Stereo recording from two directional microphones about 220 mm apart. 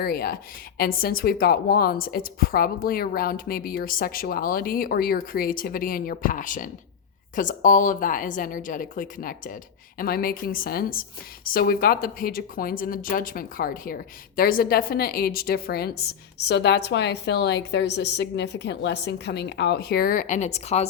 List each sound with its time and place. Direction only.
0.0 s speech: 45° left (ahead or behind)